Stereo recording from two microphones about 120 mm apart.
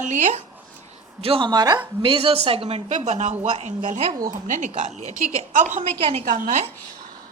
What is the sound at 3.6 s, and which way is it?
Speech, 90° right.